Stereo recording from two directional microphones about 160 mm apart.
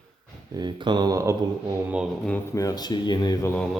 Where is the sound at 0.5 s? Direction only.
25° right (ahead or behind).